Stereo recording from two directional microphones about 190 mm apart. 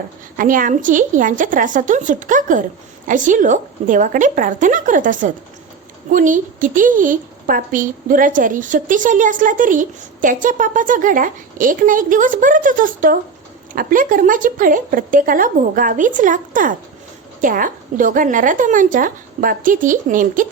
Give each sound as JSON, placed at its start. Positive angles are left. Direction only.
{"t": 0.3, "sound": "a woman's voice", "side_deg": -45}